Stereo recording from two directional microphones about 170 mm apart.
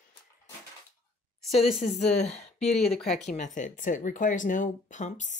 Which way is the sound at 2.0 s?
40° left (ahead or behind).